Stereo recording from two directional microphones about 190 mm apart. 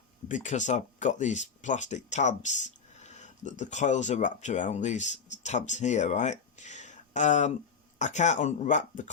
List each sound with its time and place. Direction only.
0.3 s speech: 40° left (ahead or behind)